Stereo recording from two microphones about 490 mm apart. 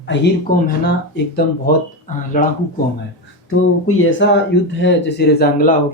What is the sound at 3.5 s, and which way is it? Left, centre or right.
Speech, left.